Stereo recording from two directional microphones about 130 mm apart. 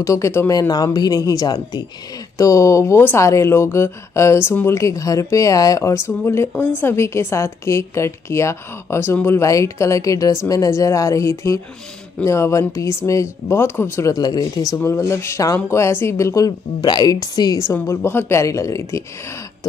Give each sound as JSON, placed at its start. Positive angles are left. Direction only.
{"t": 0.0, "sound": "speech", "side_deg": 25}
{"t": 17.7, "sound": "speech", "side_deg": 15}